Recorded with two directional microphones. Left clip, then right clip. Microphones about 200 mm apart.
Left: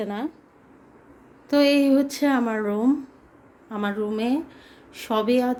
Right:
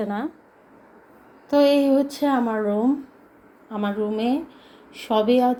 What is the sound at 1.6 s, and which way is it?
Speech, 50° left (ahead or behind).